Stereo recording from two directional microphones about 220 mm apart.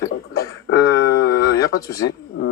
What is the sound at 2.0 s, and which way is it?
Speech, 55° left (ahead or behind).